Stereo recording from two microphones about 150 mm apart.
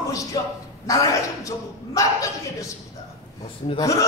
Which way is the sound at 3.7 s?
25° left (ahead or behind).